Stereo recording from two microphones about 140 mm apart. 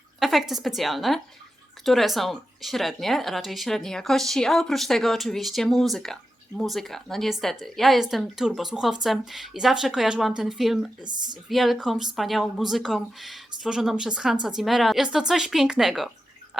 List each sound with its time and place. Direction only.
0.2 s a woman's voice: centre (ahead or behind)
11.0 s speech: 30° right (ahead or behind)
11.4 s speech: centre (ahead or behind)